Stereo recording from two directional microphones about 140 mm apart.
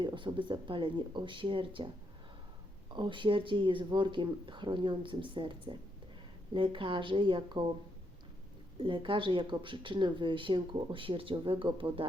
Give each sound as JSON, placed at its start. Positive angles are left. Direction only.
{"t": 0.0, "sound": "speech", "side_deg": -35}
{"t": 2.9, "sound": "speech", "side_deg": -35}
{"t": 8.8, "sound": "speech", "side_deg": -35}